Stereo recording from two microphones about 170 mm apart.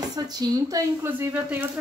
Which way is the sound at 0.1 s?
20° right (ahead or behind).